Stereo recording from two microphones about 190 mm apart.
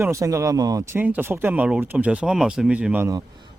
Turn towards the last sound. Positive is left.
turn(degrees=-10)  # may be behind; listen again after turning